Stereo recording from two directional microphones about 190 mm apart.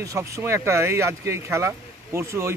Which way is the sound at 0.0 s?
15° right (ahead or behind).